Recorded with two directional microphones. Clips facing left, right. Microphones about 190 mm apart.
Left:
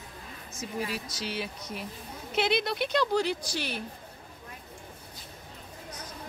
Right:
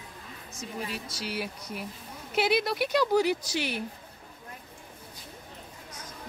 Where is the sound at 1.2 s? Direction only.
10° right (ahead or behind).